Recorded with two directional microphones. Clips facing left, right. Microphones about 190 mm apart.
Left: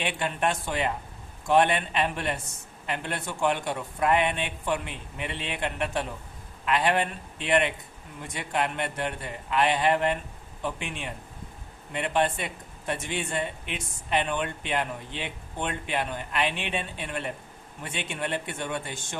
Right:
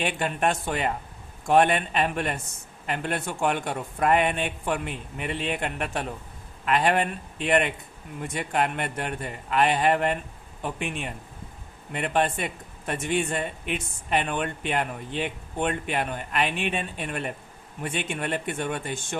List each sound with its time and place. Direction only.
0.0 s speech: 45° right (ahead or behind)